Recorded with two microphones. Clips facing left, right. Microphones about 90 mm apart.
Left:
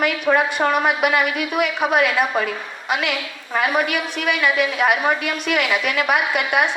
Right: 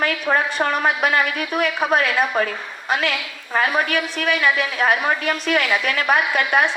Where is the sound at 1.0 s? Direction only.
40° right (ahead or behind).